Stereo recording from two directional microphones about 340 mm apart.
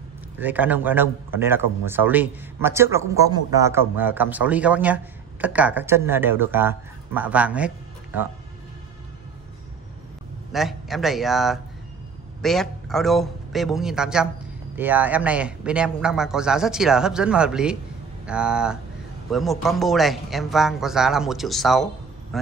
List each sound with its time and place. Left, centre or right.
0.4 s a man's voice: centre
10.5 s a man's voice: centre